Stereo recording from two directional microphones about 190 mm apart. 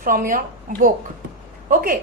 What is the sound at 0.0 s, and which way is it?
Speech, 45° right (ahead or behind).